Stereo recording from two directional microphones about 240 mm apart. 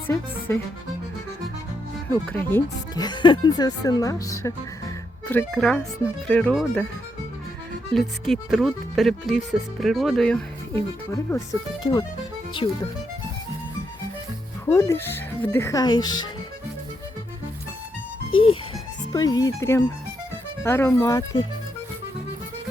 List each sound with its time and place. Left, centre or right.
0.1 s speech: centre
2.0 s speech: centre
7.9 s speech: centre
11.1 s speech: centre
14.7 s speech: centre
18.3 s music: left
19.1 s speech: centre